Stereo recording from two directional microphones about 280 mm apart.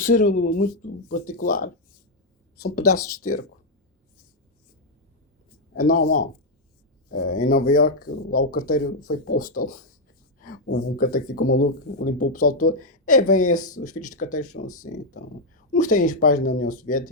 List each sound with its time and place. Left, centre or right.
0.0 s speech: left
2.7 s speech: left
5.7 s speech: left
13.1 s speech: left
13.5 s speech: left